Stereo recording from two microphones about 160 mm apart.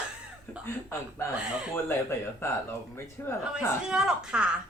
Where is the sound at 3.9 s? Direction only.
5° right (ahead or behind).